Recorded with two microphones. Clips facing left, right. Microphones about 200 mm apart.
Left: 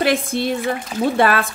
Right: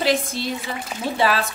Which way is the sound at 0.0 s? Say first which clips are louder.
Left 3 dB; 55° left (ahead or behind).